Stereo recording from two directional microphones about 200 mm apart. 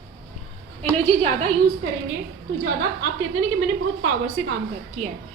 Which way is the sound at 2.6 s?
65° right (ahead or behind).